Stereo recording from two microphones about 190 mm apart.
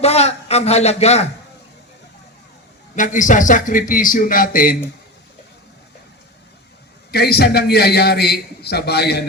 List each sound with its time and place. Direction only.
0.0 s a man's voice: 35° left (ahead or behind)
2.9 s a man's voice: 40° left (ahead or behind)
7.1 s a man's voice: 55° left (ahead or behind)